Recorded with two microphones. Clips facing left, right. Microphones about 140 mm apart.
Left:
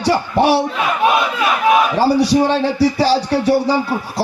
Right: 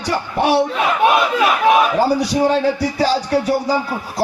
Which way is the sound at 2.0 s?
30° left (ahead or behind).